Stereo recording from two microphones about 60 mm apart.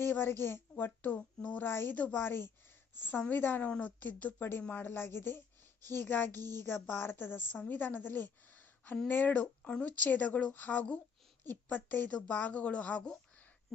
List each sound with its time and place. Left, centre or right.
0.0 s a woman's voice: left